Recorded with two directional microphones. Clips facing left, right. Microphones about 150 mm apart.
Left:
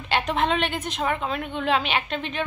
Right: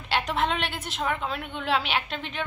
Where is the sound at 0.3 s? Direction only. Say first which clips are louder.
Left 5 dB; 15° left (ahead or behind).